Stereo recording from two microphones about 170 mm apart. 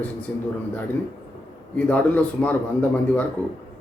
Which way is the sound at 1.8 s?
10° left (ahead or behind).